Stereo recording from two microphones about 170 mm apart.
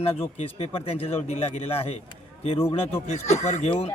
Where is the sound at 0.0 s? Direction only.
35° left (ahead or behind).